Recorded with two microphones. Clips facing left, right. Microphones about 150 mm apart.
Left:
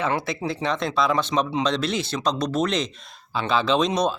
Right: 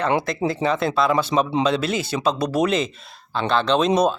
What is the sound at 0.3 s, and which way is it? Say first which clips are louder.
Speech: right 4 dB; centre (ahead or behind).